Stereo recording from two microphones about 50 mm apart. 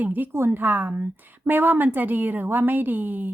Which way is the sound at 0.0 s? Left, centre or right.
Right.